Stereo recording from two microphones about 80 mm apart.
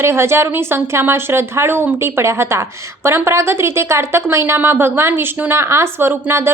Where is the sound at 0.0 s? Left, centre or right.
Right.